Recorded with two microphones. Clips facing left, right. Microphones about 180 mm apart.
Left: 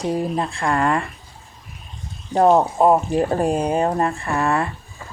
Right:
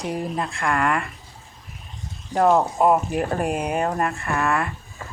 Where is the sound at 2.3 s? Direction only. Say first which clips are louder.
Left 3 dB; 25° left (ahead or behind).